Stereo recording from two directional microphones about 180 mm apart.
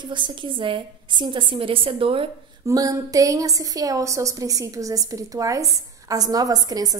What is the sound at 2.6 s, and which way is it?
A woman's voice, 20° right (ahead or behind).